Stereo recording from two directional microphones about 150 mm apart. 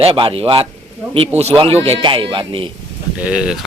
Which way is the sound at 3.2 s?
5° right (ahead or behind).